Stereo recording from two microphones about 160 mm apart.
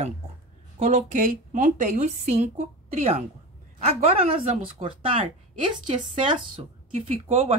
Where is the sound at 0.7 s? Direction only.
50° right (ahead or behind).